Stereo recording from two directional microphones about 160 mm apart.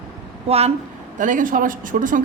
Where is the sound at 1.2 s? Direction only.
55° right (ahead or behind).